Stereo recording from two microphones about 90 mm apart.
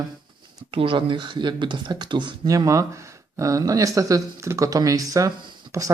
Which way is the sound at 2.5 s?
40° right (ahead or behind).